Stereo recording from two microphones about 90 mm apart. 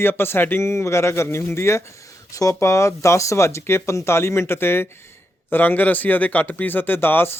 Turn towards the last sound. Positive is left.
turn(degrees=25)  # may be behind; listen again after turning